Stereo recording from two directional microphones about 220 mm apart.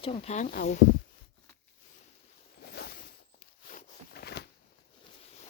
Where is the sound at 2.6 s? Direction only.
45° left (ahead or behind).